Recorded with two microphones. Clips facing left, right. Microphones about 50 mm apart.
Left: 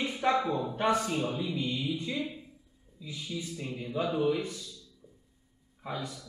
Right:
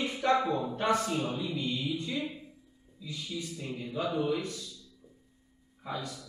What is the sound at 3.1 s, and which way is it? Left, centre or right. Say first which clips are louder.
Speech: even; centre.